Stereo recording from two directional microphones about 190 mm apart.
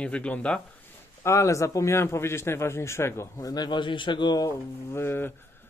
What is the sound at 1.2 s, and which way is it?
A man's voice, 15° left (ahead or behind).